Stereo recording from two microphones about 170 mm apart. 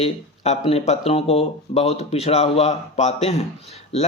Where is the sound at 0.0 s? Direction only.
40° left (ahead or behind).